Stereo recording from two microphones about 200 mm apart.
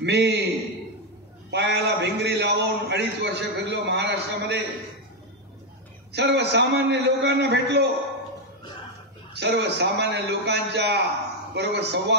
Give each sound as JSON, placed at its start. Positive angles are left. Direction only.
{"t": 0.0, "sound": "a man's voice", "side_deg": -55}
{"t": 1.5, "sound": "a man's voice", "side_deg": -55}
{"t": 6.1, "sound": "a man's voice", "side_deg": -55}
{"t": 9.3, "sound": "a man's voice", "side_deg": -55}